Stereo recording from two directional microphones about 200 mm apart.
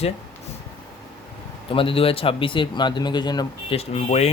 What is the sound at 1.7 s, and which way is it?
Speech, 25° left (ahead or behind).